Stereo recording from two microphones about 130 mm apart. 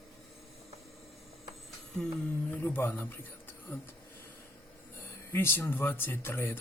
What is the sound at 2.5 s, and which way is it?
Speech, 15° left (ahead or behind).